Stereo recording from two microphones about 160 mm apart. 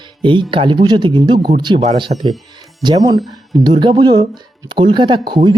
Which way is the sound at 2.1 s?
45° right (ahead or behind).